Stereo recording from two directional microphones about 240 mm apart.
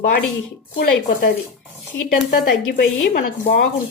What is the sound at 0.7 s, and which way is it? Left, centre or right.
Speech, left.